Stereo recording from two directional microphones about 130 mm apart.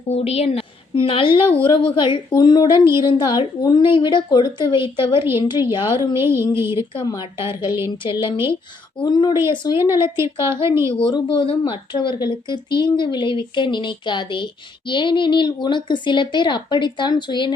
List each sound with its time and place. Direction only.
0.1 s a woman's voice: 50° left (ahead or behind); by 2.7 s 30° left (ahead or behind)
2.7 s a woman's voice: 20° right (ahead or behind)
3.0 s speech: 35° left (ahead or behind)
6.1 s a woman's voice: 20° right (ahead or behind)
6.9 s speech: 35° left (ahead or behind)
9.7 s a woman's voice: 20° right (ahead or behind)
10.9 s speech: 40° left (ahead or behind)